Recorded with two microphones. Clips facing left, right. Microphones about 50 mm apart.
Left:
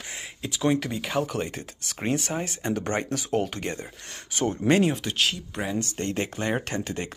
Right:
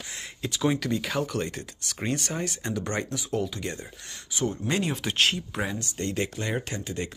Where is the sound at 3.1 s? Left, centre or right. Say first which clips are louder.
Left 3 dB; left.